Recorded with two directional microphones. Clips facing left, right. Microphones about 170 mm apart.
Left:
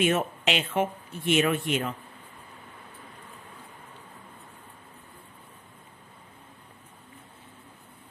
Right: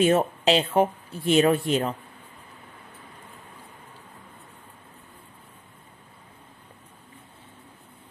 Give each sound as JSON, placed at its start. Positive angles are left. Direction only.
{"t": 0.0, "sound": "speech", "side_deg": -35}